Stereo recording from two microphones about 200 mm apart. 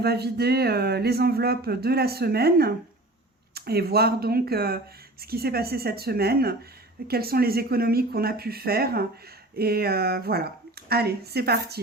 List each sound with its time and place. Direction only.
0.0 s speech: 55° right (ahead or behind)